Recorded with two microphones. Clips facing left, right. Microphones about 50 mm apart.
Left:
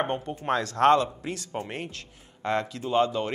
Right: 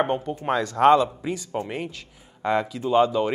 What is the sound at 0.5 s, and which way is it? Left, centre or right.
Speech, centre.